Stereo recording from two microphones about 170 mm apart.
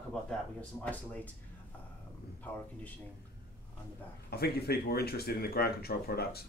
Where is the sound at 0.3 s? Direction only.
10° left (ahead or behind).